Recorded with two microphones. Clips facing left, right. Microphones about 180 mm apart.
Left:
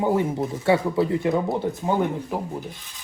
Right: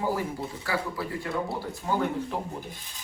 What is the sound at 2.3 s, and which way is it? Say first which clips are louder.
Speech: left 5 dB; 10° left (ahead or behind).